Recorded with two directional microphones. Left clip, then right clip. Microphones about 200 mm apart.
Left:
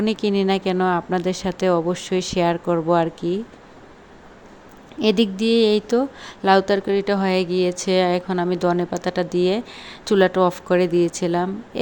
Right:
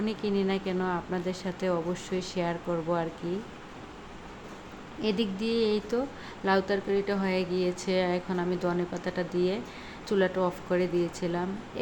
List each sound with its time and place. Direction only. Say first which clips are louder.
0.0 s a woman's voice: left 9 dB; 40° left (ahead or behind)
4.9 s a woman's voice: left 11 dB; 40° left (ahead or behind)